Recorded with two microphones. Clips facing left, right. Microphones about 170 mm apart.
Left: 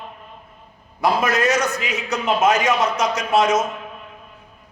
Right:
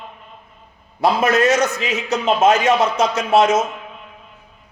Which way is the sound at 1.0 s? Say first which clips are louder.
Right 3 dB; 25° right (ahead or behind).